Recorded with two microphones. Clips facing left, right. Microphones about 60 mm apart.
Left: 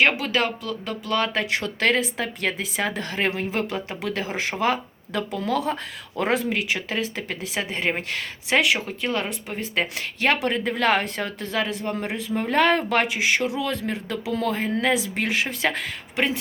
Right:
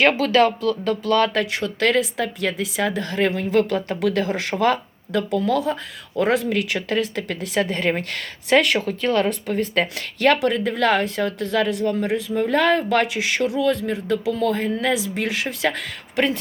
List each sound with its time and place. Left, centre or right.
0.1 s speech: centre